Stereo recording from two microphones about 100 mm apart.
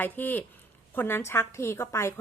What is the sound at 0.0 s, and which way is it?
Speech, 20° left (ahead or behind).